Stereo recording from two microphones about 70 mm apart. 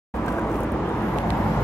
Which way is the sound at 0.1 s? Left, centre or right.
Left.